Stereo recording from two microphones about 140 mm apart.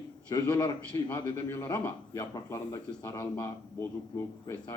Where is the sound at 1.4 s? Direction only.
15° left (ahead or behind).